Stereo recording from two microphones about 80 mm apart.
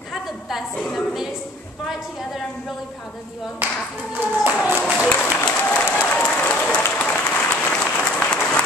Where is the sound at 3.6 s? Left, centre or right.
Right.